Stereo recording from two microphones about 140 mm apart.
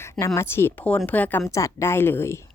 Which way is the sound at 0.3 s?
15° left (ahead or behind).